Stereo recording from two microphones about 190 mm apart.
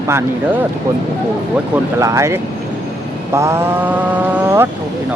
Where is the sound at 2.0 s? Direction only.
15° right (ahead or behind).